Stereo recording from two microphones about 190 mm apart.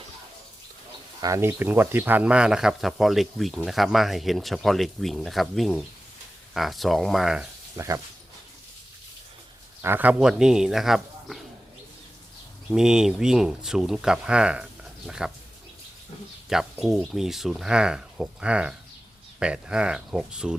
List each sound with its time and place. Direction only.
1.2 s speech: 15° right (ahead or behind)
7.8 s speech: 15° right (ahead or behind)
9.8 s speech: 10° right (ahead or behind)
12.7 s speech: 5° right (ahead or behind)
16.5 s speech: centre (ahead or behind)